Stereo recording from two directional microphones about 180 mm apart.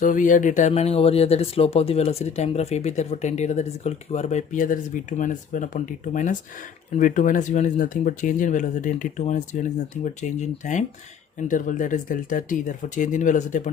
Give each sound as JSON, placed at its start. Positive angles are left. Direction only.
{"t": 0.0, "sound": "speech", "side_deg": 45}